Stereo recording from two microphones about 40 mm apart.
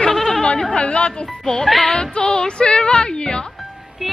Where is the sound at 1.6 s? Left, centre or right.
Centre.